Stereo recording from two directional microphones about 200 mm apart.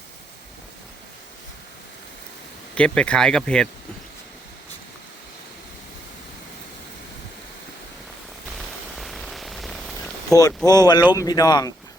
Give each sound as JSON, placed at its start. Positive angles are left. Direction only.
{"t": 2.7, "sound": "speech", "side_deg": 5}
{"t": 8.4, "sound": "a sound", "side_deg": 0}
{"t": 10.7, "sound": "speech", "side_deg": 20}